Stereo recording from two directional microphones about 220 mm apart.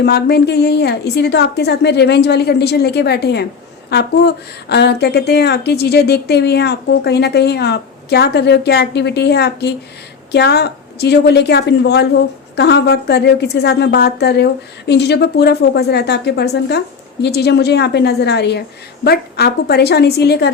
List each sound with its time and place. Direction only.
0.0 s a woman's voice: 50° left (ahead or behind)